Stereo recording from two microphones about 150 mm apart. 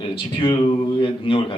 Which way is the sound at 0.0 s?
35° left (ahead or behind).